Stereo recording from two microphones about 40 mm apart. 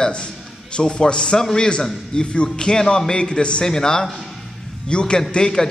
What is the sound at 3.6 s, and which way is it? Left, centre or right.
A man's voice, centre.